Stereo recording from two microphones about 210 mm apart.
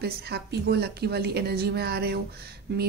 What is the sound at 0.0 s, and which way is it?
Speech, 50° right (ahead or behind).